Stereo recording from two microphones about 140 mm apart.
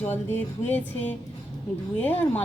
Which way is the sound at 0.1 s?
15° left (ahead or behind).